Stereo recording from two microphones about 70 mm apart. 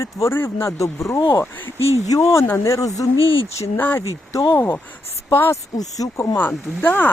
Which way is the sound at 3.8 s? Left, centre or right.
Left.